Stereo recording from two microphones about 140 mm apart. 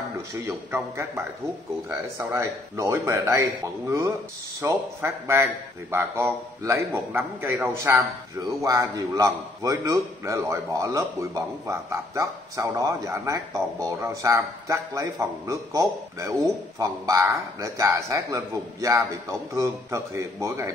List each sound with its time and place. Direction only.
1.9 s a man's voice: 20° right (ahead or behind)